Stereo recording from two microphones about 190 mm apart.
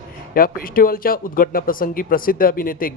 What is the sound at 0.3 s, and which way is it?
Speech, 50° left (ahead or behind).